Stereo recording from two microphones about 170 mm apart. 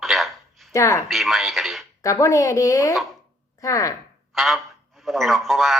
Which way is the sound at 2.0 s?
20° left (ahead or behind).